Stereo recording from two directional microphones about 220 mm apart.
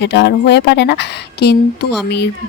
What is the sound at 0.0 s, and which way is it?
Speech, 50° left (ahead or behind).